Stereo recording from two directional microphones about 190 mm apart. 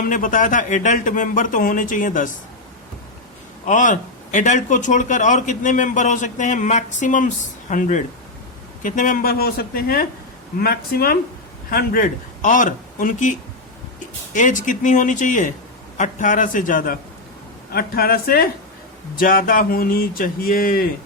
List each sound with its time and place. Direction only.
0.1 s speech: 45° left (ahead or behind)
3.7 s a man's voice: 40° left (ahead or behind)
14.3 s a man's voice: 40° left (ahead or behind)